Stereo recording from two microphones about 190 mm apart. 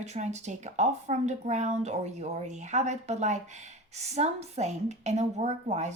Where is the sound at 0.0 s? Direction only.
35° right (ahead or behind).